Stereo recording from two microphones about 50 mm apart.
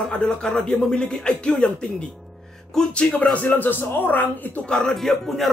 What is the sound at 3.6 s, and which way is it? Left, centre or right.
Speech, left.